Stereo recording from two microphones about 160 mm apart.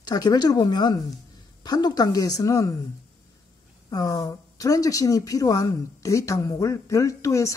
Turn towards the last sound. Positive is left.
turn(degrees=20)  # may be behind; listen again after turning